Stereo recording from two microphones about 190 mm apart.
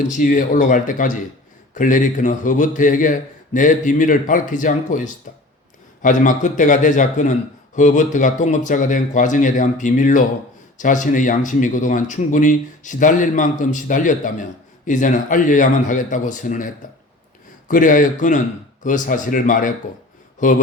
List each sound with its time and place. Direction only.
0.1 s a man's voice: 45° left (ahead or behind)